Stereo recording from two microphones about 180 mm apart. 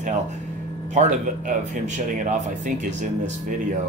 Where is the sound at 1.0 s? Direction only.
40° right (ahead or behind).